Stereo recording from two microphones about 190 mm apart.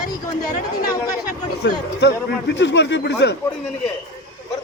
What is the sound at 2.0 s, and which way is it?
Speech, 65° left (ahead or behind).